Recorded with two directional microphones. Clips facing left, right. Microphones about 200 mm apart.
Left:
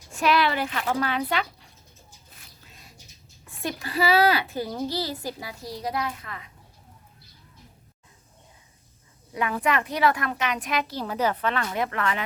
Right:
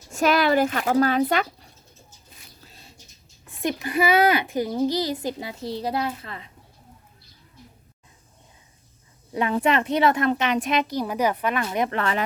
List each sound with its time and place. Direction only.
0.1 s speech: 45° right (ahead or behind)
2.6 s rodents: 30° right (ahead or behind)
3.4 s a sound: 20° right (ahead or behind)
3.8 s a woman's voice: 20° right (ahead or behind)
9.3 s a woman's voice: 25° right (ahead or behind)
11.9 s speech: 30° right (ahead or behind)